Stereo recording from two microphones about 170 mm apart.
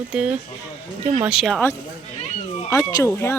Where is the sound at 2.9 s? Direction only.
20° left (ahead or behind).